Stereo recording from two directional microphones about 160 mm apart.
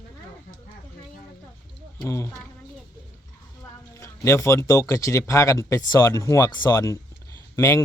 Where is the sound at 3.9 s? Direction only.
15° left (ahead or behind).